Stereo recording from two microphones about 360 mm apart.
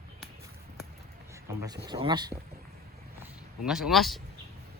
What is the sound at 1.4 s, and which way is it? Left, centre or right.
Speech, centre.